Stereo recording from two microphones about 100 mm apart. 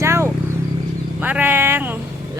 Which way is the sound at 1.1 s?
15° right (ahead or behind).